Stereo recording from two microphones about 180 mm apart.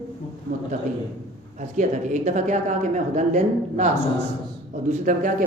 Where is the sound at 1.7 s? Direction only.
40° right (ahead or behind).